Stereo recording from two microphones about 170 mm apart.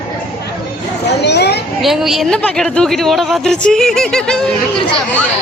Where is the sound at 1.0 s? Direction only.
85° left.